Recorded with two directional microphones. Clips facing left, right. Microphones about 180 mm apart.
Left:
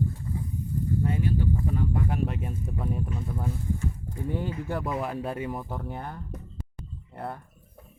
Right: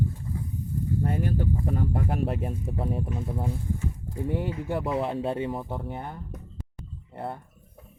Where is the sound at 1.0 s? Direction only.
50° right (ahead or behind); by 3.5 s 25° right (ahead or behind).